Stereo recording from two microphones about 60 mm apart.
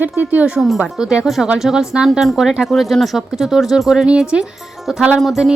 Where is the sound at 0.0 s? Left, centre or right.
Right.